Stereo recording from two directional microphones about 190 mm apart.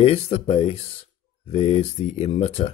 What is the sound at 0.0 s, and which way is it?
Speech, 35° left (ahead or behind).